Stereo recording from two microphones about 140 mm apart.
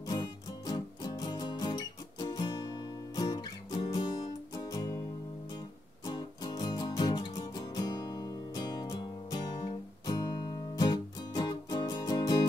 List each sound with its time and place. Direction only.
0.0 s music: 25° left (ahead or behind)
6.0 s music: 30° left (ahead or behind)